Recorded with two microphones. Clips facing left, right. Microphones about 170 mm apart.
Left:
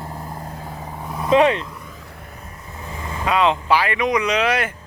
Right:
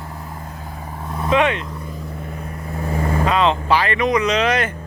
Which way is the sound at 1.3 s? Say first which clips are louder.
Left 3 dB; 35° left (ahead or behind).